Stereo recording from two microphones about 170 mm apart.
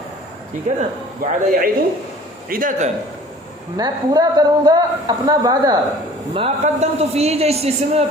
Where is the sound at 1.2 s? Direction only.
55° right (ahead or behind).